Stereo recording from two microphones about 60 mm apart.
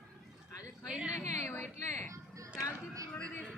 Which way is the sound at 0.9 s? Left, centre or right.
Centre.